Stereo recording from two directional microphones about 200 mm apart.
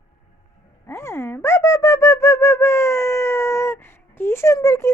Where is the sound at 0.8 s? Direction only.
15° left (ahead or behind).